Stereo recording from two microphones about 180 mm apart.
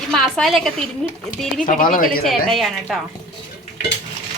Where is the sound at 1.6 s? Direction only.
50° left (ahead or behind).